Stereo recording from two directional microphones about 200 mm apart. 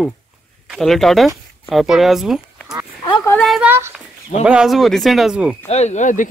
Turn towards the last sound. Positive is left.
turn(degrees=40)  # may be behind; listen again after turning